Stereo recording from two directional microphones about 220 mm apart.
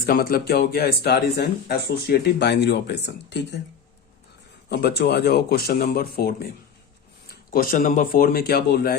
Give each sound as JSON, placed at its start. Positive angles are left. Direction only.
{"t": 0.0, "sound": "speech", "side_deg": 45}
{"t": 4.7, "sound": "speech", "side_deg": 45}
{"t": 7.5, "sound": "speech", "side_deg": 40}